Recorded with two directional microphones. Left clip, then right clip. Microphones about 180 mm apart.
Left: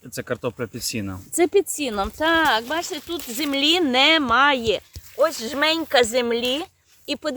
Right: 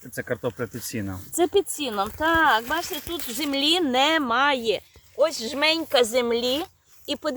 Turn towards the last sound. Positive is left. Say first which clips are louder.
# left 1 dB
turn(degrees=15)  # may be behind; listen again after turning